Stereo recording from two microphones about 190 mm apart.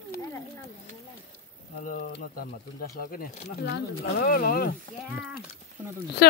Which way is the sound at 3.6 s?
55° left (ahead or behind).